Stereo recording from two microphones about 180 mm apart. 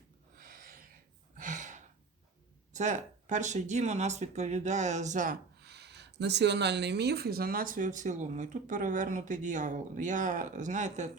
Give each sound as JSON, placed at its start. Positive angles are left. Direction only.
{"t": 0.3, "sound": "a sound", "side_deg": -50}
{"t": 1.4, "sound": "gasp", "side_deg": -45}
{"t": 2.7, "sound": "speech", "side_deg": -40}